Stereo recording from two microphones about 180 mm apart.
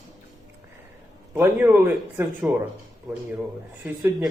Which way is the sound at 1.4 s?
10° right (ahead or behind).